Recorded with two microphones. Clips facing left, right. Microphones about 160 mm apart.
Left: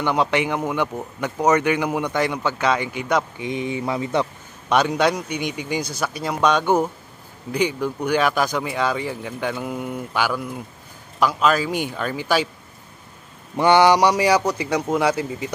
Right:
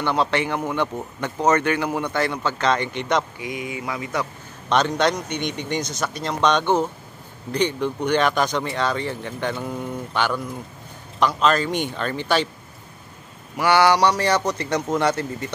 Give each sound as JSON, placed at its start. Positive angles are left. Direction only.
{"t": 0.0, "sound": "speech", "side_deg": 15}
{"t": 3.3, "sound": "speech", "side_deg": 25}
{"t": 4.6, "sound": "speech", "side_deg": 10}
{"t": 13.6, "sound": "speech", "side_deg": 20}